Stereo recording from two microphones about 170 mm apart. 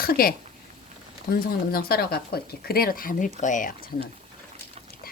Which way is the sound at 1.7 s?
65° left (ahead or behind).